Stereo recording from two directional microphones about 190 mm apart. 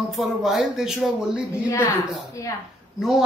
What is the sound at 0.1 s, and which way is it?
Speech, centre (ahead or behind).